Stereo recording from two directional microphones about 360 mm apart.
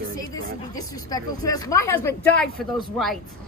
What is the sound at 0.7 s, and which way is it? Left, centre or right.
Speech, centre.